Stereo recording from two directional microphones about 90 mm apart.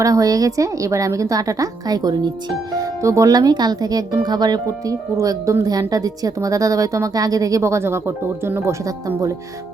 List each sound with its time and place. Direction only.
0.0 s speech: 40° right (ahead or behind)
2.7 s speech: 35° right (ahead or behind)
5.1 s speech: 40° right (ahead or behind)